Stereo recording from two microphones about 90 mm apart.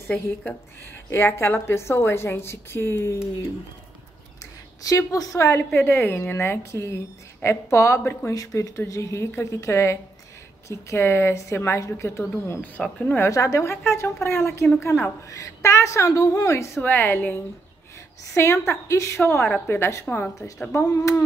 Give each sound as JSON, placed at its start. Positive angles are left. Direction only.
{"t": 0.1, "sound": "speech", "side_deg": 15}
{"t": 1.1, "sound": "a woman's voice", "side_deg": 30}
{"t": 4.8, "sound": "a woman's voice", "side_deg": 40}
{"t": 12.8, "sound": "speech", "side_deg": 5}
{"t": 13.3, "sound": "a woman's voice", "side_deg": 35}
{"t": 15.2, "sound": "a woman's voice", "side_deg": 35}
{"t": 16.8, "sound": "a woman's voice", "side_deg": 25}